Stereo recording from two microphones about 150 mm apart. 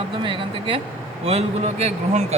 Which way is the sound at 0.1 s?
35° right (ahead or behind).